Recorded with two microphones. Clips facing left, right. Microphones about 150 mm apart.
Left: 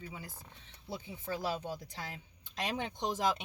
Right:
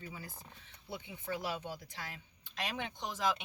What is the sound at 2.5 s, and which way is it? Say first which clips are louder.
Speech: left 3 dB; 40° left (ahead or behind).